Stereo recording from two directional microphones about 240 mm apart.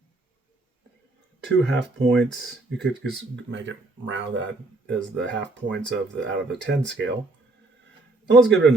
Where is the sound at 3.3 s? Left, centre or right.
Right.